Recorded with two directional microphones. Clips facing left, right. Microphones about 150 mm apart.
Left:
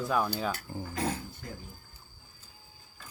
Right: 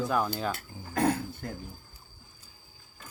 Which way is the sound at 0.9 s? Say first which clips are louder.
Right 7 dB; 55° right (ahead or behind).